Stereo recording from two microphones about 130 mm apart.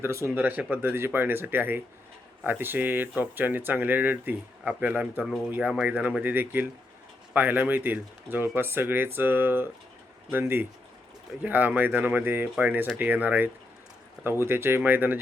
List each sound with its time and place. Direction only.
0.0 s speech: 20° right (ahead or behind)